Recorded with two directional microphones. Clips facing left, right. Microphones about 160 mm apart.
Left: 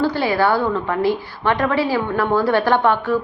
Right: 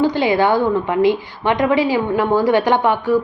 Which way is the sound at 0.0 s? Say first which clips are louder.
Right 3 dB; 20° right (ahead or behind).